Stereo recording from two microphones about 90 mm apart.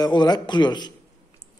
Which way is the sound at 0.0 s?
50° left (ahead or behind).